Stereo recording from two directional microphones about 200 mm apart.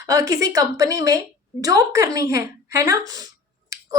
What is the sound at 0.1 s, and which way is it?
A woman's voice, 15° right (ahead or behind).